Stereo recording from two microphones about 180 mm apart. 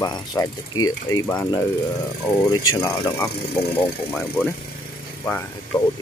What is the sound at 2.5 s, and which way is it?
Speech, 15° left (ahead or behind).